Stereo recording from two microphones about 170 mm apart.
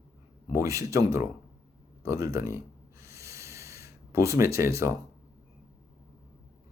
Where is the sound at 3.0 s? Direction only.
15° right (ahead or behind).